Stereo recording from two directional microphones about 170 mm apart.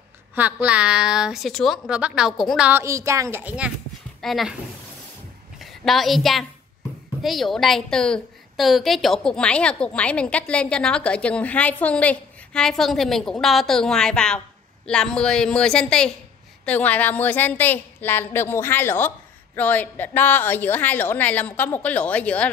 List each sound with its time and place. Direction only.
0.3 s a woman's voice: 10° right (ahead or behind)
2.8 s a woman's voice: 15° right (ahead or behind); by 4.6 s centre (ahead or behind)
5.6 s a woman's voice: centre (ahead or behind)